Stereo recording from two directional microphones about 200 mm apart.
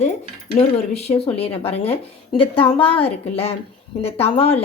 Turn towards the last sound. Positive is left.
turn(degrees=30)  # may be behind; listen again after turning